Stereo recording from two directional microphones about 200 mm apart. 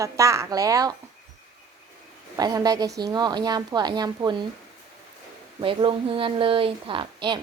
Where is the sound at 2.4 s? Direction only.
20° right (ahead or behind).